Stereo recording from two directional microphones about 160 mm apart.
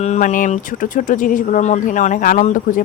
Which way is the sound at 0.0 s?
50° left (ahead or behind).